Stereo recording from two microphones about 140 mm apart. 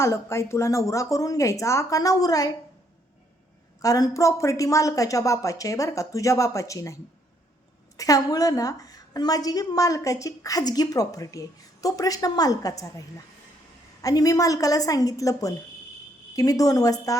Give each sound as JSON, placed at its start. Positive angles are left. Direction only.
{"t": 0.0, "sound": "a woman's voice", "side_deg": 20}
{"t": 3.8, "sound": "a woman's voice", "side_deg": 25}